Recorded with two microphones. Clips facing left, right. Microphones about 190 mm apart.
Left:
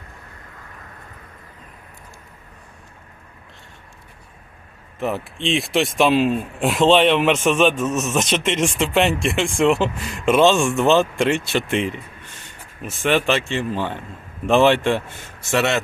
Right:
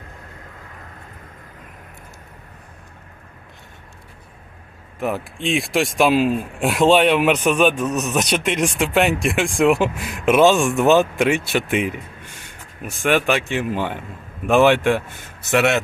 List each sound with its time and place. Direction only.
4.9 s speech: centre (ahead or behind)
10.8 s speech: 15° right (ahead or behind)
11.2 s speech: 5° right (ahead or behind)
13.4 s speech: 15° right (ahead or behind)